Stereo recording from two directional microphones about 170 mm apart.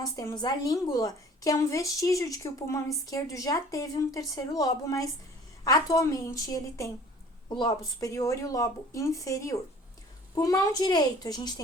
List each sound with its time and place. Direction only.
0.0 s a woman's voice: 20° left (ahead or behind)